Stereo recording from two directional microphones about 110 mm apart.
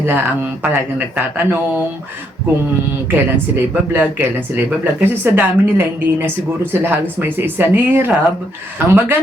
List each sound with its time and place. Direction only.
0.0 s speech: 20° right (ahead or behind)
3.1 s speech: 20° right (ahead or behind)